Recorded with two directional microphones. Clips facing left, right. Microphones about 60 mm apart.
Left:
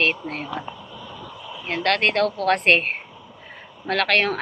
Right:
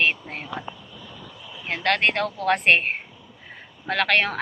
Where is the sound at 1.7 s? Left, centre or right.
Centre.